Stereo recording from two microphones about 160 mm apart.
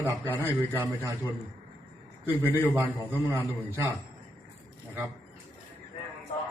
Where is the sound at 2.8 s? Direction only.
10° right (ahead or behind).